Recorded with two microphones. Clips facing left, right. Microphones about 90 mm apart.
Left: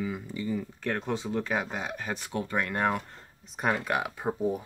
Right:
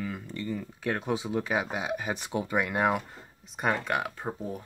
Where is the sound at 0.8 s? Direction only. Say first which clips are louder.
Right 3 dB; 10° right (ahead or behind).